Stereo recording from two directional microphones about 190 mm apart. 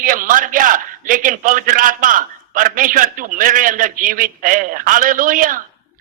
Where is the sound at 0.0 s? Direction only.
45° right (ahead or behind).